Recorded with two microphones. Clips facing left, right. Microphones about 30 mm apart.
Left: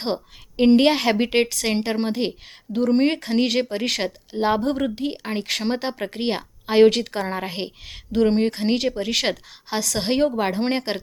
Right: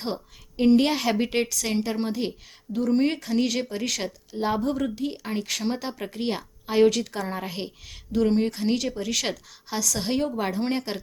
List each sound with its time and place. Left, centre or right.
0.0 s speech: left